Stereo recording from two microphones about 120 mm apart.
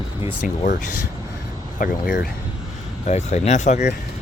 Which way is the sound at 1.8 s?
90° left.